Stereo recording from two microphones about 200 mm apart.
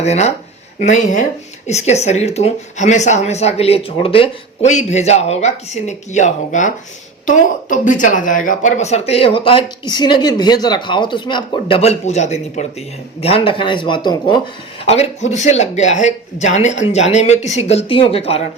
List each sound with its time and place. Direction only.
0.0 s speech: 35° left (ahead or behind)
14.8 s speech: 30° left (ahead or behind)